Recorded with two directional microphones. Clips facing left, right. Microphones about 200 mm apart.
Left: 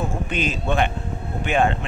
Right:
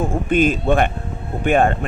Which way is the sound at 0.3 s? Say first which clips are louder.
Right 11 dB; 50° right (ahead or behind).